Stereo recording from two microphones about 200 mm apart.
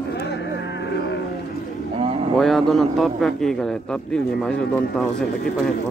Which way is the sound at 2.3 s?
Centre (ahead or behind).